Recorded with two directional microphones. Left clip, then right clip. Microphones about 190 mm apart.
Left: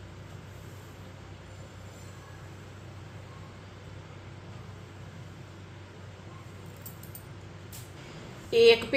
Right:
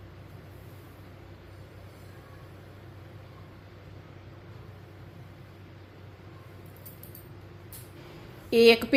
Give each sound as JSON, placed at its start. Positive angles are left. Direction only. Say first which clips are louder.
{"t": 8.4, "sound": "a woman's voice", "louder": "right 1 dB", "side_deg": -55}